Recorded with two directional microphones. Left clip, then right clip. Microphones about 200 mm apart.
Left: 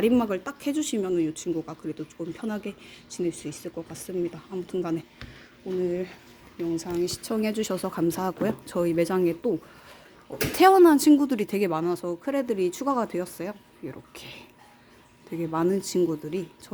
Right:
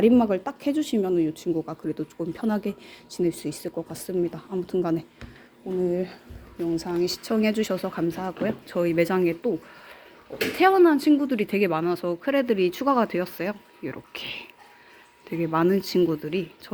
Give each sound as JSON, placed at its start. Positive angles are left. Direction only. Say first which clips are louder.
{"t": 0.0, "sound": "speech", "louder": "right 4 dB", "side_deg": 0}
{"t": 10.6, "sound": "speech", "louder": "left 2 dB", "side_deg": 25}